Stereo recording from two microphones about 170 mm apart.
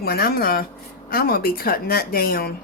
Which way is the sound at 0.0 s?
65° left (ahead or behind).